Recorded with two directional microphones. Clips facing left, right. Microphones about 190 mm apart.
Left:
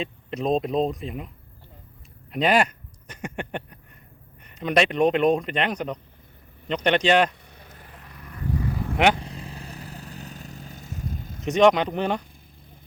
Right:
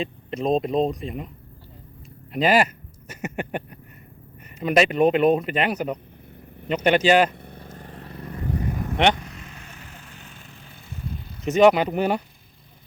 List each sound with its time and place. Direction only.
0.0 s speech: centre (ahead or behind)
2.3 s speech: centre (ahead or behind)
7.3 s vehicle: 55° right (ahead or behind); by 8.8 s 25° right (ahead or behind)
9.1 s vehicle: 30° left (ahead or behind)
11.4 s speech: 5° right (ahead or behind)